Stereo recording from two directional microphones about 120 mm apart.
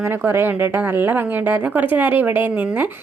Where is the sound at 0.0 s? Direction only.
20° right (ahead or behind).